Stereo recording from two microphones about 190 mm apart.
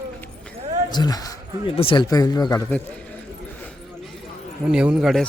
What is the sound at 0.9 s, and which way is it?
A man's voice, 20° left (ahead or behind).